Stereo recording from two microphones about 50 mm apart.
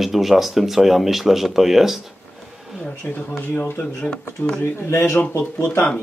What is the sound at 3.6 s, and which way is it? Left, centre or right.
Speech, left.